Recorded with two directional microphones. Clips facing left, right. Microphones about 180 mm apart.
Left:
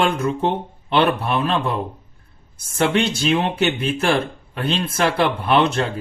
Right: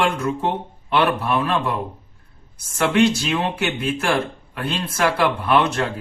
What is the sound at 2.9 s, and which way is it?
Speech, 20° left (ahead or behind).